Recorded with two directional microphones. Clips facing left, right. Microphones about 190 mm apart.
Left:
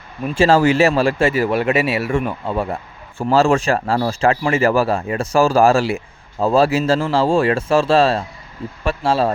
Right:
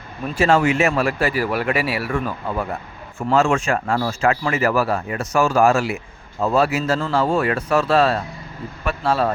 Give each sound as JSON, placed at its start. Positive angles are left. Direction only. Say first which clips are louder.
{"t": 0.3, "sound": "speech", "louder": "left 4 dB", "side_deg": 35}